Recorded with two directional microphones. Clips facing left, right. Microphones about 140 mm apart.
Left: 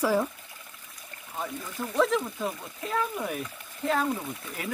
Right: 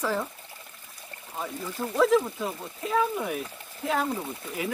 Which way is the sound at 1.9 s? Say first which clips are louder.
Right 3 dB; 5° right (ahead or behind).